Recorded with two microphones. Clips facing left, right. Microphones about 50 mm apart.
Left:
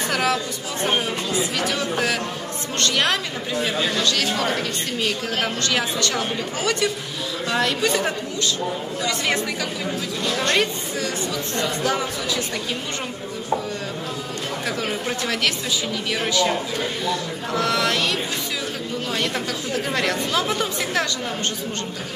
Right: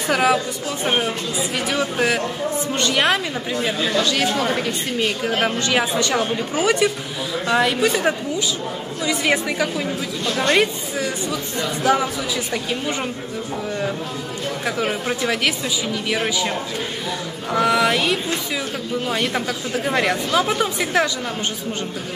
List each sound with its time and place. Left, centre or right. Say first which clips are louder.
0.1 s a woman's voice: right 7 dB; centre
14.8 s a woman's voice: right 3 dB; centre